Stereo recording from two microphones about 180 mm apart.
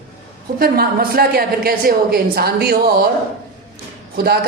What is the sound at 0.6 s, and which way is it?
A woman's voice, 55° right (ahead or behind).